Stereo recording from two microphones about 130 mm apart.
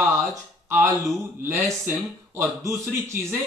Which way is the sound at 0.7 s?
25° right (ahead or behind).